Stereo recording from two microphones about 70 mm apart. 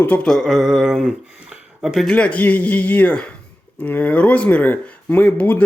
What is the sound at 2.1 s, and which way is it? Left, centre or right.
Speech, centre.